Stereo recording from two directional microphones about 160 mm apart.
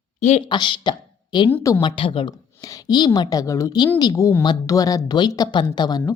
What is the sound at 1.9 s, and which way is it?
Speech, 35° left (ahead or behind).